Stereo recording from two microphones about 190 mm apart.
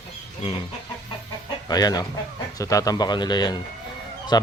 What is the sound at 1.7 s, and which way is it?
Speech, 20° left (ahead or behind).